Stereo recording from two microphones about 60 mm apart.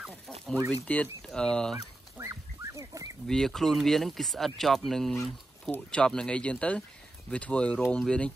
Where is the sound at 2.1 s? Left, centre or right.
Right.